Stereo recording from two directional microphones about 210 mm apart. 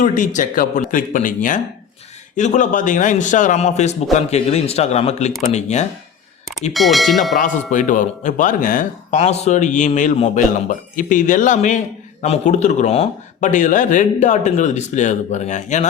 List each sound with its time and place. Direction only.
0.0 s speech: 40° left (ahead or behind)
6.7 s speech: centre (ahead or behind)
7.3 s speech: 35° left (ahead or behind)